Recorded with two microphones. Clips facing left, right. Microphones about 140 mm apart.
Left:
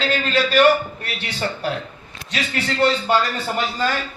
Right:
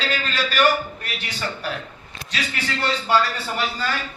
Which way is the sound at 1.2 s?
30° left (ahead or behind).